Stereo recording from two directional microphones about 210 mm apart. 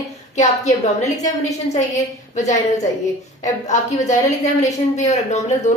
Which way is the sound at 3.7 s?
35° left (ahead or behind).